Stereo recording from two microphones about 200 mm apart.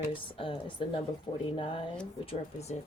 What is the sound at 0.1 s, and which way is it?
A woman's voice, 25° left (ahead or behind).